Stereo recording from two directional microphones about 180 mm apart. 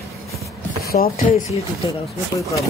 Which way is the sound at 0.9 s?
55° left (ahead or behind).